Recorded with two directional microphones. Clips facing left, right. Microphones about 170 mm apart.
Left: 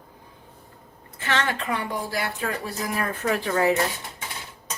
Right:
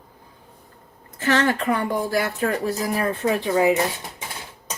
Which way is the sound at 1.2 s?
40° right (ahead or behind).